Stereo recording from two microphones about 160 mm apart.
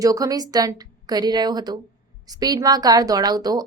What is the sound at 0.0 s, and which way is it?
A woman's voice, 20° right (ahead or behind).